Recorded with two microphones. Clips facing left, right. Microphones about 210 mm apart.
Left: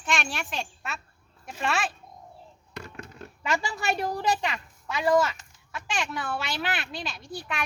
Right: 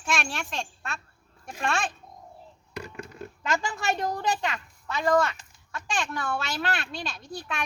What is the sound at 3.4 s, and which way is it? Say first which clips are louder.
A child's voice: even; 10° left (ahead or behind).